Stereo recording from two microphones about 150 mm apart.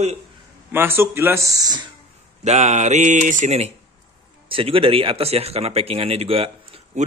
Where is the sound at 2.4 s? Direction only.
50° right (ahead or behind).